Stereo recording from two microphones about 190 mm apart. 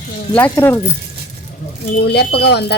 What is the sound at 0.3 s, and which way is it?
Speech, 10° left (ahead or behind).